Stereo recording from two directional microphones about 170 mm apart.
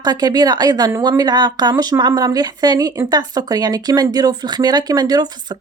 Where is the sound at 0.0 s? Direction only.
25° right (ahead or behind).